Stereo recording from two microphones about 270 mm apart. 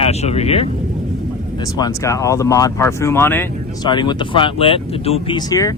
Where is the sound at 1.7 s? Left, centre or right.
Centre.